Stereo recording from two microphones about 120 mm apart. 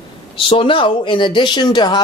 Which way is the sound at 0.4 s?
45° left (ahead or behind).